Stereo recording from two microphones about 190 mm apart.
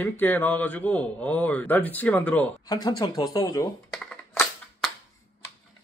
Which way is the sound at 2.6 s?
20° left (ahead or behind).